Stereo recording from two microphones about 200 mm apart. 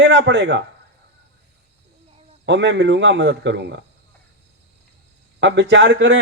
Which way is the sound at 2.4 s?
60° right (ahead or behind).